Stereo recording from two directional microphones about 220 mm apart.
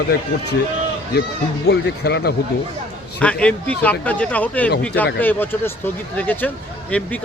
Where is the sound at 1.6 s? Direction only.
50° left (ahead or behind).